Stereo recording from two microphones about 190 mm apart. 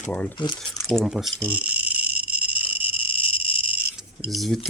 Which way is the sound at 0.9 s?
Centre (ahead or behind).